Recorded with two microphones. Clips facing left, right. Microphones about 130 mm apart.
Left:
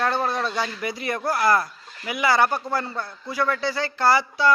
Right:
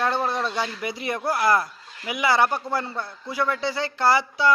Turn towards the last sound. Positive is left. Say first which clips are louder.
# left 1 dB
turn(degrees=-20)  # may be behind; listen again after turning